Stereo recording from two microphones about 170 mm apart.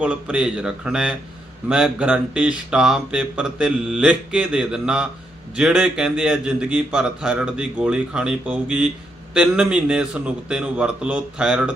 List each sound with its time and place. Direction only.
0.0 s speech: 5° right (ahead or behind)